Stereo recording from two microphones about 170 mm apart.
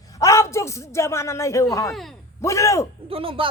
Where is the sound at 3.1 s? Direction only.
35° right (ahead or behind).